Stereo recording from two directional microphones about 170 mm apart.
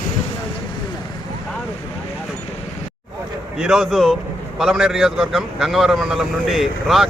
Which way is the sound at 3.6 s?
Centre (ahead or behind).